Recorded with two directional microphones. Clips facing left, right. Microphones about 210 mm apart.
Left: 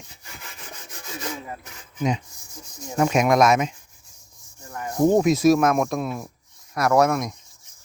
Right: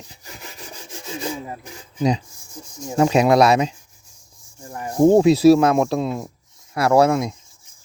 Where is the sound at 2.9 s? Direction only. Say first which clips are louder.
Right 4 dB; 30° right (ahead or behind).